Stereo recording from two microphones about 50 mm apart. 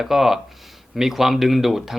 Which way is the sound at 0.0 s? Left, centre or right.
Centre.